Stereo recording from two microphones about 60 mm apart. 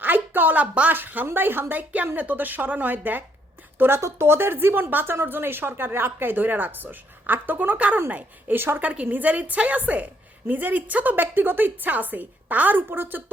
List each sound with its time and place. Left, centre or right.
0.0 s a woman's voice: right
8.8 s a woman's voice: right